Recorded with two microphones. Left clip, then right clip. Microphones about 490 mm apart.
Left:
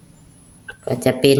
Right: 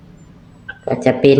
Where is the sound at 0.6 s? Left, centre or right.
Left.